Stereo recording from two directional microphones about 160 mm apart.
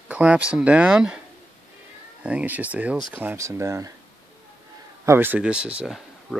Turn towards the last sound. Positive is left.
turn(degrees=0)  # may be behind; listen again after turning